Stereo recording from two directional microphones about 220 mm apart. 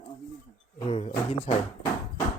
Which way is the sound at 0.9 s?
30° left (ahead or behind).